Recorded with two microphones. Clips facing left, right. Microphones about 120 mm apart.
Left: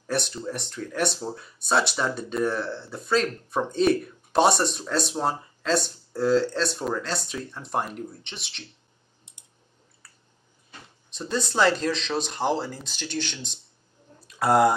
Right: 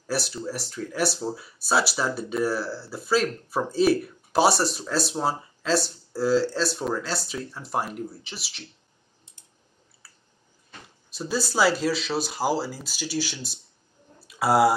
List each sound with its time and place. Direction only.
0.0 s speech: 5° right (ahead or behind)
11.1 s speech: 5° right (ahead or behind)